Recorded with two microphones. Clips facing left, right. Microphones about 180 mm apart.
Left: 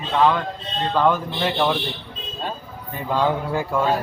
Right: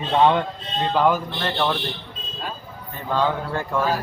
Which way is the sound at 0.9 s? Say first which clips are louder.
Even; 5° right (ahead or behind).